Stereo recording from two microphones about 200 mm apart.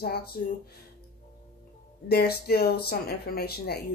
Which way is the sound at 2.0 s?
50° left (ahead or behind).